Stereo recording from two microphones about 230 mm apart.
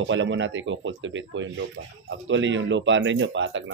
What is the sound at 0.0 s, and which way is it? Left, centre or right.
Speech, right.